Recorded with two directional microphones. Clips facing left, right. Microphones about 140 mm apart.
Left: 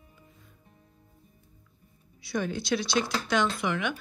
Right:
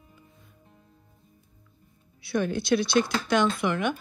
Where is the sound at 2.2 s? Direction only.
60° right (ahead or behind).